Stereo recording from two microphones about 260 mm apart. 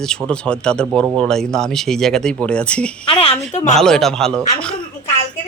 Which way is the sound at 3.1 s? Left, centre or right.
Left.